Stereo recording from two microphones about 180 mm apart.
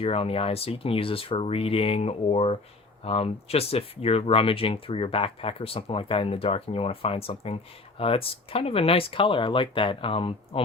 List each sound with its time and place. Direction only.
0.0 s speech: 35° left (ahead or behind)